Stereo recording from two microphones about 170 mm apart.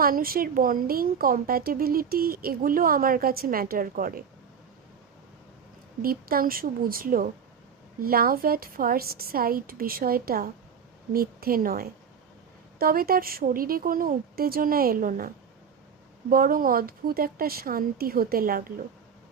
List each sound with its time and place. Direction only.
0.0 s speech: 60° right (ahead or behind)
6.0 s speech: 60° right (ahead or behind)
16.3 s speech: 55° right (ahead or behind)